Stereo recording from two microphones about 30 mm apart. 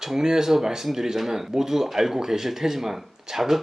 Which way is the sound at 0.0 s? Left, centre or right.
Centre.